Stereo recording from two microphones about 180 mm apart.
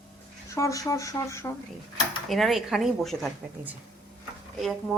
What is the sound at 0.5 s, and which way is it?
Speech, 20° left (ahead or behind).